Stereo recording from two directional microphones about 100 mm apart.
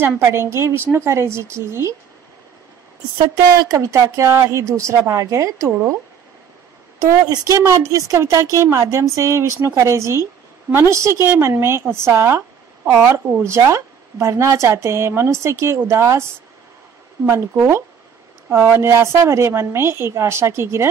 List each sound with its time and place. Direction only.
0.0 s speech: 25° right (ahead or behind)
3.6 s speech: 30° right (ahead or behind)
7.2 s a woman's voice: 30° right (ahead or behind)
17.3 s speech: 25° right (ahead or behind)